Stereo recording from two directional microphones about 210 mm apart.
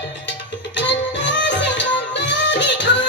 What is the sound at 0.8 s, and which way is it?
Music, 60° left (ahead or behind).